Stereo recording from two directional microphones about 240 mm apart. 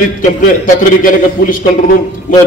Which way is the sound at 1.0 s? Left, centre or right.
Left.